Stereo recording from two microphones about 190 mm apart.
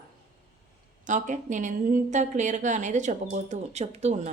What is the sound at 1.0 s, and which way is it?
A woman's voice, 40° right (ahead or behind).